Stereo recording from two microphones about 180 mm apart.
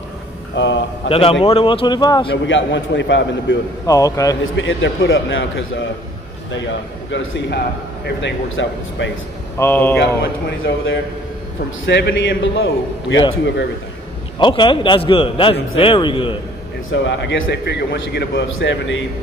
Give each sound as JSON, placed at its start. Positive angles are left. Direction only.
{"t": 0.6, "sound": "a man's voice", "side_deg": 90}
{"t": 1.0, "sound": "a man's voice", "side_deg": 30}
{"t": 2.3, "sound": "a man's voice", "side_deg": 90}
{"t": 3.8, "sound": "a man's voice", "side_deg": 20}
{"t": 4.6, "sound": "a man's voice", "side_deg": 90}
{"t": 7.1, "sound": "a man's voice", "side_deg": 85}
{"t": 9.6, "sound": "speech", "side_deg": 10}
{"t": 10.6, "sound": "a man's voice", "side_deg": 75}
{"t": 14.4, "sound": "a man's voice", "side_deg": 25}
{"t": 16.9, "sound": "a man's voice", "side_deg": 90}